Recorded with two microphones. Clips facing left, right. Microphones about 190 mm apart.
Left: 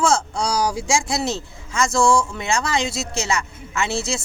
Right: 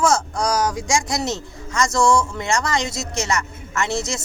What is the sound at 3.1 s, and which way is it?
Speech, 10° left (ahead or behind).